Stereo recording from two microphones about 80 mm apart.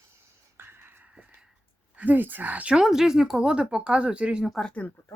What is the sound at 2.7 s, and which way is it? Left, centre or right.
Speech, centre.